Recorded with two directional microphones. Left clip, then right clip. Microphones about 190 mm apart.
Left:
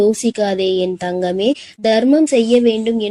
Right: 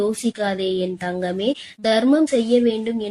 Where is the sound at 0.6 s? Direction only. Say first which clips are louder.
Left 6 dB; 10° left (ahead or behind).